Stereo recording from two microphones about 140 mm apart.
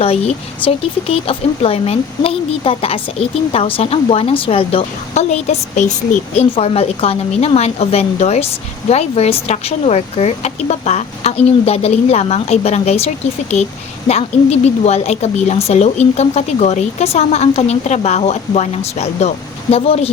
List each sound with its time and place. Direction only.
0.0 s speech: 45° left (ahead or behind)
14.1 s speech: 50° left (ahead or behind)